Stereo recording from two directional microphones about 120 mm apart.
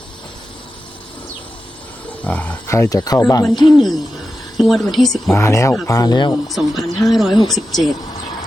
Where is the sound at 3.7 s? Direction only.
Centre (ahead or behind).